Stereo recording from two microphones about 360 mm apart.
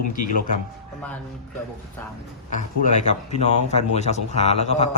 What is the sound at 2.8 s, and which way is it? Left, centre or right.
A man's voice, centre.